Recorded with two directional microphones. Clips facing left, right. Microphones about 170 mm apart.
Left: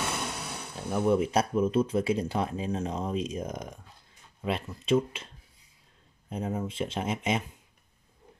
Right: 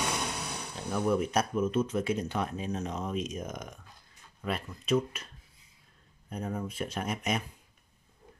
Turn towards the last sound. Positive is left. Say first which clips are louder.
# left 3 dB
turn(degrees=25)  # may be behind; listen again after turning